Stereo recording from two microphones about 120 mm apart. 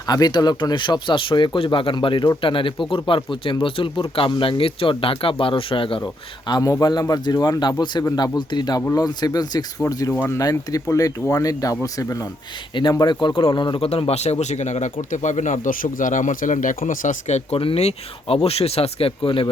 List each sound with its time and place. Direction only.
0.1 s speech: 35° left (ahead or behind)
6.5 s speech: 30° left (ahead or behind)
12.7 s a man's voice: 40° left (ahead or behind)